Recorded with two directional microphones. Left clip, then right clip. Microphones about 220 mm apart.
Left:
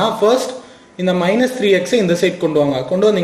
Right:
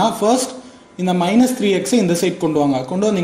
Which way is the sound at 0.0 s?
30° right (ahead or behind).